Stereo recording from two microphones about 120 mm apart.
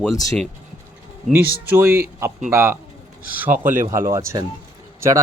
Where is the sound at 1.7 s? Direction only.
20° right (ahead or behind).